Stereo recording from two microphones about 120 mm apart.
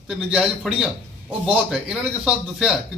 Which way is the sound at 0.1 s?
5° right (ahead or behind).